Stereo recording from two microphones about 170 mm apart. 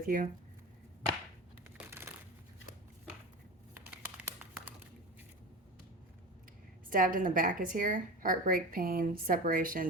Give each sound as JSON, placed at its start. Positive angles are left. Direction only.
{"t": 0.0, "sound": "a woman's voice", "side_deg": -55}
{"t": 1.9, "sound": "crushing", "side_deg": -15}
{"t": 4.2, "sound": "crumpling", "side_deg": -5}
{"t": 6.9, "sound": "a woman's voice", "side_deg": -55}